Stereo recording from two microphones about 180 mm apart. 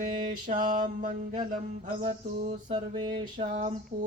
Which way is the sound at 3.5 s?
45° right (ahead or behind).